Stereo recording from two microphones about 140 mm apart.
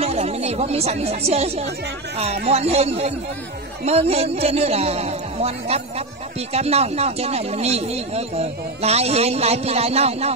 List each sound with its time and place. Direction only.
0.0 s speech: 50° right (ahead or behind)